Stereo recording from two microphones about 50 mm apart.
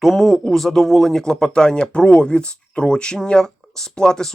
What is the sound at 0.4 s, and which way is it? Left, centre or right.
Speech, centre.